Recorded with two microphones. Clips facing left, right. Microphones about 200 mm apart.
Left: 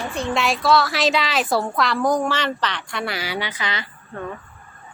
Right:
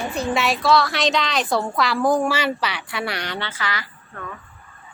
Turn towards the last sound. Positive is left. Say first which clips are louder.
# left 1 dB
turn(degrees=20)  # may be behind; listen again after turning